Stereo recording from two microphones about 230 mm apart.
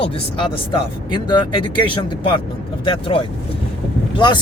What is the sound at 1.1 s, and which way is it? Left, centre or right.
Speech, centre.